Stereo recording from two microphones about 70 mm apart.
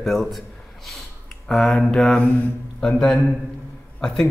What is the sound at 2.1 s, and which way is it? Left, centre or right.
Speech, left.